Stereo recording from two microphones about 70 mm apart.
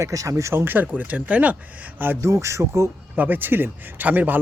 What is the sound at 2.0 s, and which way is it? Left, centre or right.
Speech, right.